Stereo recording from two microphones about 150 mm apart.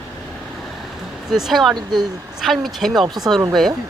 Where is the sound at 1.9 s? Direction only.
30° right (ahead or behind).